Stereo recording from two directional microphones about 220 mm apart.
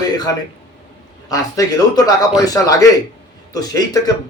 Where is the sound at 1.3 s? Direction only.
15° left (ahead or behind).